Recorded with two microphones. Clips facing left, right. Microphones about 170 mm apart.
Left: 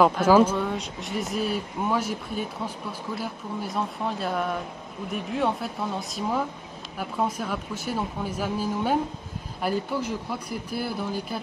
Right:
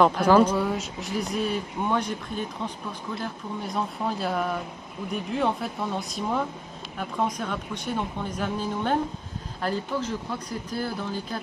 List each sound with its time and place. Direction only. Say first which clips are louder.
0.0 s speech: even; 5° left (ahead or behind)
0.6 s speech: right 1 dB; 5° right (ahead or behind)